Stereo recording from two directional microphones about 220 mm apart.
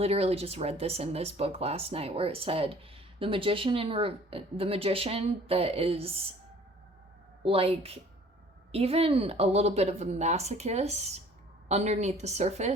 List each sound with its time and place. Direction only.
0.0 s speech: 25° right (ahead or behind)
7.4 s a woman's voice: 25° right (ahead or behind)